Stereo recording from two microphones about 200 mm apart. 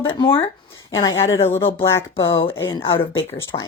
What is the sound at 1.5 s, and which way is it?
Speech, 25° left (ahead or behind).